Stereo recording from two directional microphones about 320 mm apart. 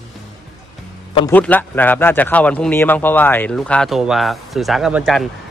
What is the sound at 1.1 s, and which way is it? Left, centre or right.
A man's voice, centre.